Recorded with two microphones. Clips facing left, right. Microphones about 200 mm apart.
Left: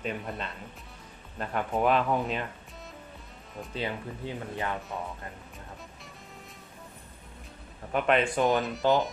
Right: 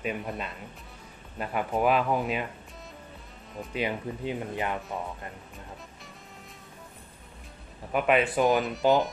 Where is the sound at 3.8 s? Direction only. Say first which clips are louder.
Right 4 dB; 15° right (ahead or behind).